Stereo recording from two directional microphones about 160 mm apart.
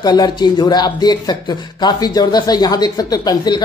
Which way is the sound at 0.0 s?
25° left (ahead or behind).